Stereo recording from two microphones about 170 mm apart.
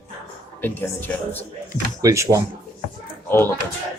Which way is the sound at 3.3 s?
15° left (ahead or behind).